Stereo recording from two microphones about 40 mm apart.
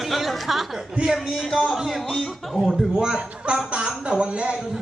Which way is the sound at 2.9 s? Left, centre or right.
Right.